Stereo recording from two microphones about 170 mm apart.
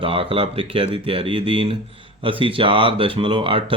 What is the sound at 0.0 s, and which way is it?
Speech, 30° right (ahead or behind).